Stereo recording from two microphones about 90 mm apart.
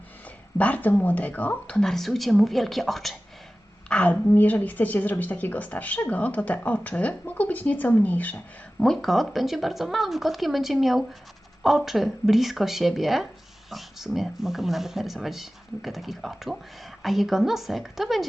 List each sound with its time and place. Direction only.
0.6 s speech: 20° left (ahead or behind); by 3.2 s centre (ahead or behind)
3.8 s a woman's voice: 15° left (ahead or behind)
8.8 s speech: 5° left (ahead or behind)